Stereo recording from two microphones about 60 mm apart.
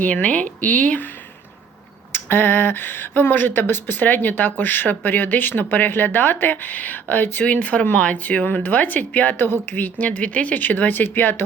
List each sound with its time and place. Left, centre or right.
0.0 s speech: left
2.1 s speech: left